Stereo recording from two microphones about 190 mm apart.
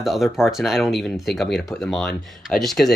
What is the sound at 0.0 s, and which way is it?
Speech, centre (ahead or behind).